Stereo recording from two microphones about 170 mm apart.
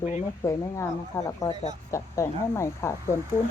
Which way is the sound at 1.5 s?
40° left (ahead or behind).